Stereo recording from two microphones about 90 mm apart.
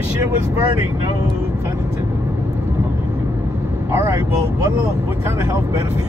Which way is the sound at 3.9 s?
30° right (ahead or behind).